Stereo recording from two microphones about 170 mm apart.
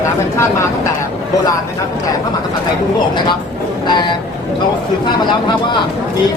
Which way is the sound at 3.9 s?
25° left (ahead or behind).